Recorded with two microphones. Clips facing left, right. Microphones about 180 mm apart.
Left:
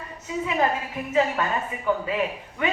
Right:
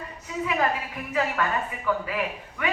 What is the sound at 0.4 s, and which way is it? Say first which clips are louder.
A woman's voice: left 1 dB; 25° left (ahead or behind).